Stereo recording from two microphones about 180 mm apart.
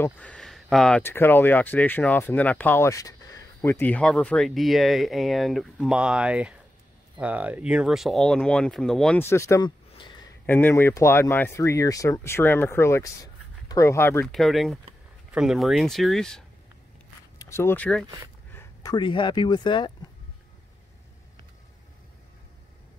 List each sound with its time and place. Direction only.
0.0 s speech: 5° left (ahead or behind)
9.2 s speech: 15° left (ahead or behind)
14.2 s speech: centre (ahead or behind)
17.4 s speech: 15° left (ahead or behind)